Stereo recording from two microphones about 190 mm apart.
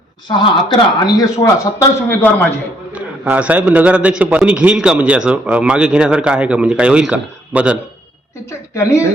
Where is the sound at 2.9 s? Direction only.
10° right (ahead or behind).